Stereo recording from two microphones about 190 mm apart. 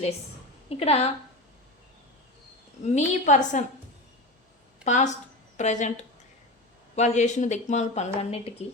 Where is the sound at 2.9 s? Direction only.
40° left (ahead or behind).